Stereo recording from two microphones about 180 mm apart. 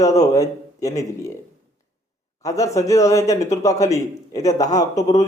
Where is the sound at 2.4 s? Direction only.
15° left (ahead or behind).